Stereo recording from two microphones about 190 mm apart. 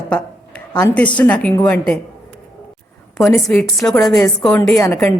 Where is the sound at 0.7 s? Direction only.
20° left (ahead or behind).